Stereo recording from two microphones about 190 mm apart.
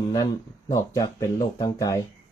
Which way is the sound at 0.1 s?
20° left (ahead or behind).